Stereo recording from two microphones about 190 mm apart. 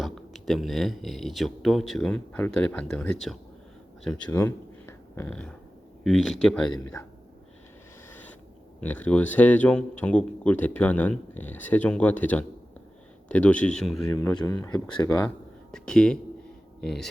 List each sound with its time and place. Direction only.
0.0 s speech: centre (ahead or behind)
6.7 s speech: 15° left (ahead or behind)
8.8 s speech: 10° left (ahead or behind)
14.1 s speech: 15° left (ahead or behind)
15.7 s speech: 5° left (ahead or behind)